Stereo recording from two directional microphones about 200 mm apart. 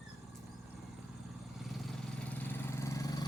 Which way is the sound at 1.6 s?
Centre (ahead or behind).